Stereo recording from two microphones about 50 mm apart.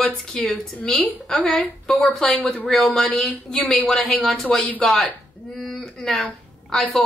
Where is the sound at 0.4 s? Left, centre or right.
Left.